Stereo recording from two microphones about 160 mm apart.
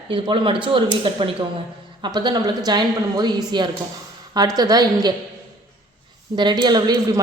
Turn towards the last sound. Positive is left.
turn(degrees=-25)  # may be behind; listen again after turning